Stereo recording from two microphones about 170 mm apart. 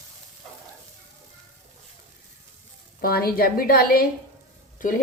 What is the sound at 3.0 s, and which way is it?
A woman's voice, 60° left (ahead or behind).